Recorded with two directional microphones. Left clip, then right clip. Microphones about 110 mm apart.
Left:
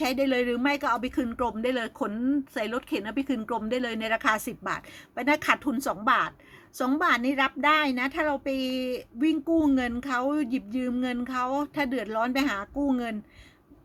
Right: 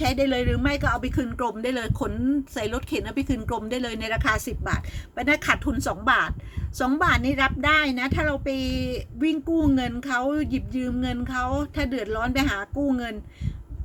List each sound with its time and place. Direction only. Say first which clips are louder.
0.0 s a woman's voice: right 2 dB; 40° left (ahead or behind)